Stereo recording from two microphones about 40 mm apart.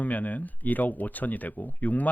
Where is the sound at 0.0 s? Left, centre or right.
Left.